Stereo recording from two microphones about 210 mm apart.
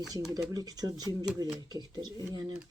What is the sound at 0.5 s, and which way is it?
Speech, 20° right (ahead or behind).